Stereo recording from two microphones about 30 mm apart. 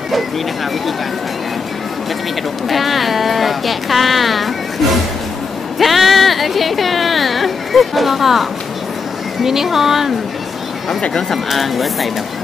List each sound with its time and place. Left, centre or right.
2.7 s speech: centre
5.8 s speech: centre
11.1 s speech: centre